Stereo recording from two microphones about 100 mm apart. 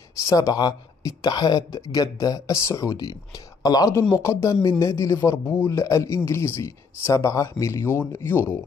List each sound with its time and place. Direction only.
0.3 s speech: 35° left (ahead or behind)